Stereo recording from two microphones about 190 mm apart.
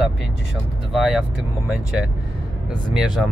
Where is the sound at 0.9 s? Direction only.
Centre (ahead or behind).